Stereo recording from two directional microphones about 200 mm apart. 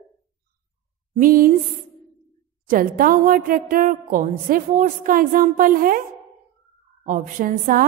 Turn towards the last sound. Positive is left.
turn(degrees=-40)  # may be behind; listen again after turning